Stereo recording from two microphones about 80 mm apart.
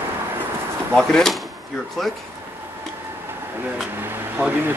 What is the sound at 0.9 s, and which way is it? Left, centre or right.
Speech, centre.